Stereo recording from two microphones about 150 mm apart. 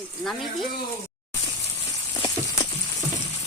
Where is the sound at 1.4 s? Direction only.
25° left (ahead or behind).